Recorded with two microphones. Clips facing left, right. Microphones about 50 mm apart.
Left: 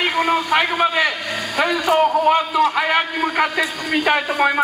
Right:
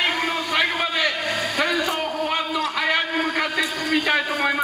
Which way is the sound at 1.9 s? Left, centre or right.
Centre.